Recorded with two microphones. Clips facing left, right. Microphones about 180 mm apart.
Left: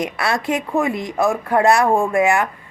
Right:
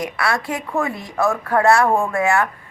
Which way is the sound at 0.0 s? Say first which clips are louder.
Left 1 dB; 20° left (ahead or behind).